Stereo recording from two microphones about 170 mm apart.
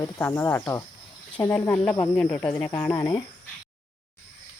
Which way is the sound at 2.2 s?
10° left (ahead or behind).